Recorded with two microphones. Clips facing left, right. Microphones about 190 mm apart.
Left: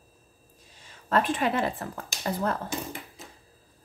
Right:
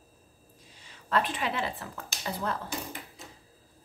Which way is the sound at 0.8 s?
45° left (ahead or behind).